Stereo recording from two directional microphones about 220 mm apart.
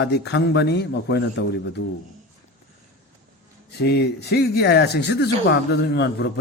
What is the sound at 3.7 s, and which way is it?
Speech, 45° left (ahead or behind).